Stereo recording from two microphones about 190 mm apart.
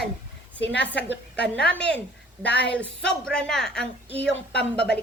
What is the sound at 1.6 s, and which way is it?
A woman's voice, 5° left (ahead or behind).